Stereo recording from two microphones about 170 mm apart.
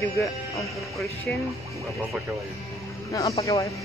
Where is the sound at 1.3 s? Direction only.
Centre (ahead or behind).